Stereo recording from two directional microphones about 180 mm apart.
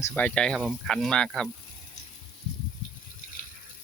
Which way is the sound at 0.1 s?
5° left (ahead or behind).